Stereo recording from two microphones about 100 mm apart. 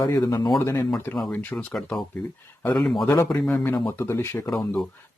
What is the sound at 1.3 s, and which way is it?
Speech, 15° left (ahead or behind).